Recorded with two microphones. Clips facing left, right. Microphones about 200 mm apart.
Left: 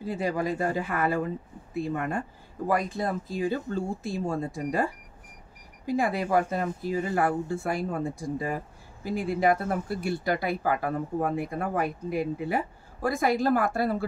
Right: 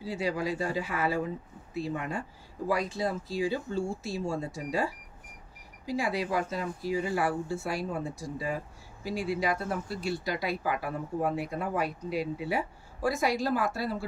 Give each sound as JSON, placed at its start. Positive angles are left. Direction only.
{"t": 0.0, "sound": "speech", "side_deg": 50}
{"t": 5.9, "sound": "speech", "side_deg": 55}